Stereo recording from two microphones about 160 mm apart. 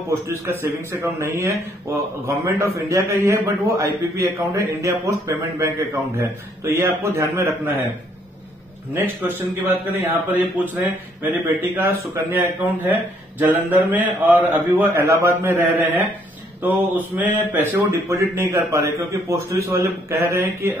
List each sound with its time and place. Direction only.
0.1 s a man's voice: 15° right (ahead or behind)
8.9 s a man's voice: 10° right (ahead or behind)